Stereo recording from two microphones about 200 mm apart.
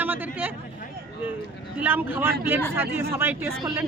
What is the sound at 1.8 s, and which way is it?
A man's voice, 10° right (ahead or behind).